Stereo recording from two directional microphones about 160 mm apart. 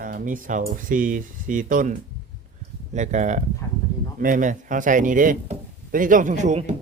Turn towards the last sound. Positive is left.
turn(degrees=-45)  # may be behind; listen again after turning